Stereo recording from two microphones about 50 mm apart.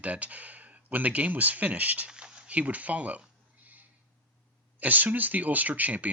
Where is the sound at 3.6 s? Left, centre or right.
Right.